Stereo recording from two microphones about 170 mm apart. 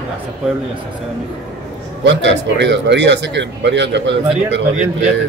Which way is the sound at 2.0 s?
90° right.